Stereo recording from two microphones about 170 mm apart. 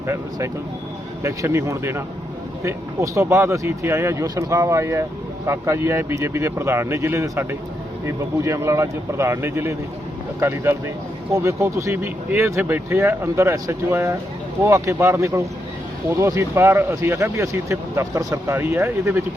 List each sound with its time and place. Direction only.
0.1 s speech: 15° right (ahead or behind)